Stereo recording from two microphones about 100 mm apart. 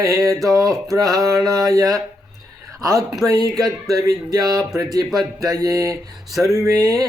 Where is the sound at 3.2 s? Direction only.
35° right (ahead or behind).